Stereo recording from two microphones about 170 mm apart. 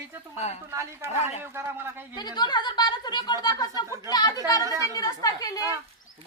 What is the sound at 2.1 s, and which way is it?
A woman's voice, 25° left (ahead or behind).